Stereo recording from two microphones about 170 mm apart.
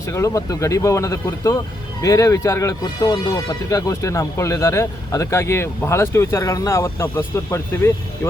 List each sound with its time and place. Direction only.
0.0 s speech: 15° left (ahead or behind)